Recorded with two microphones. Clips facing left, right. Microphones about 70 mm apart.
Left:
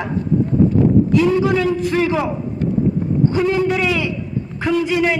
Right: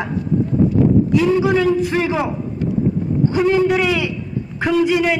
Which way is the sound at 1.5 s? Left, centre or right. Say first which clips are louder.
Right 1 dB; centre.